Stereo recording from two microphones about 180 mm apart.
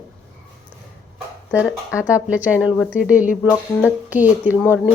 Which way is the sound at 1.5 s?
5° right (ahead or behind).